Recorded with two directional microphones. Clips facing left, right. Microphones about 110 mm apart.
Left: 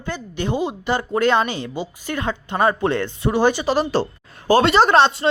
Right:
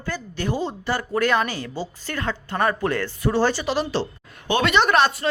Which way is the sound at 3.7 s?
45° left (ahead or behind).